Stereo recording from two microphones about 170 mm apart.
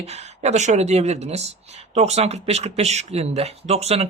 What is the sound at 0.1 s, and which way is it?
Speech, 40° right (ahead or behind).